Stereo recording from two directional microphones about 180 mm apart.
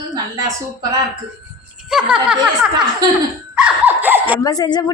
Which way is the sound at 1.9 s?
5° right (ahead or behind).